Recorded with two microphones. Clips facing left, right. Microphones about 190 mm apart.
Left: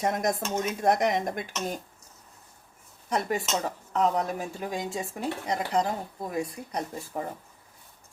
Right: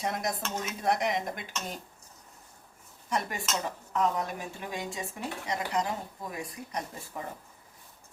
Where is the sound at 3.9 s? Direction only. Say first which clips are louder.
Left 4 dB; 35° left (ahead or behind).